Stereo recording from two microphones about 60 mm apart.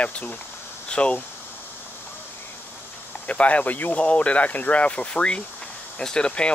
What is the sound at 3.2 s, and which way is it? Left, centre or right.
Speech, left.